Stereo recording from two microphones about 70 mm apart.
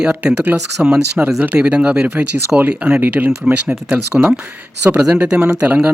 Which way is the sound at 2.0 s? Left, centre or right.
Right.